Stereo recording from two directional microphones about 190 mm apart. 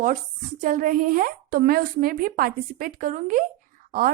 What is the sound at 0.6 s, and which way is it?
A woman's voice, 45° right (ahead or behind).